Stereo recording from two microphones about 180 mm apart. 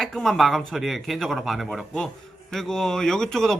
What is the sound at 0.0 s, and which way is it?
Speech, centre (ahead or behind).